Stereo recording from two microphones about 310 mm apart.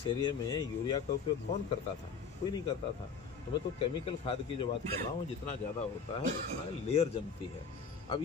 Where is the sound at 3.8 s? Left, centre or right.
Centre.